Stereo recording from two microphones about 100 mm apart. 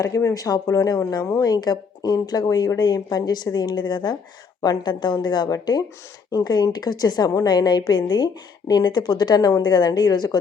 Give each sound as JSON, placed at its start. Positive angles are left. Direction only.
{"t": 0.0, "sound": "a woman's voice", "side_deg": 30}